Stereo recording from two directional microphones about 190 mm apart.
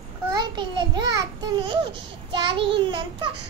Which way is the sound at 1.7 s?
25° right (ahead or behind).